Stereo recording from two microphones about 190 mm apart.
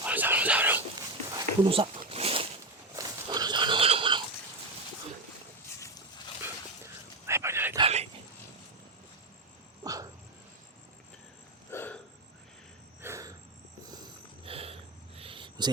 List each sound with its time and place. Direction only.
0.0 s whispering: 10° right (ahead or behind)
0.9 s a sound: 20° right (ahead or behind)
2.9 s horse: 20° right (ahead or behind)
6.4 s shatter: 15° right (ahead or behind)
7.8 s a sound: 30° right (ahead or behind)
9.8 s dog: 20° right (ahead or behind)
11.7 s hiccup: 10° left (ahead or behind)
13.0 s cricket: 15° right (ahead or behind)
13.9 s a sound: 25° right (ahead or behind)